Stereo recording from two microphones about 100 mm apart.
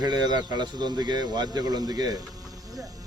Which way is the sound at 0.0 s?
45° right (ahead or behind).